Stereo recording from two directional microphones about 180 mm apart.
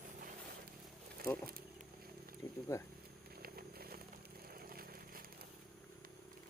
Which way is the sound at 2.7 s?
15° left (ahead or behind).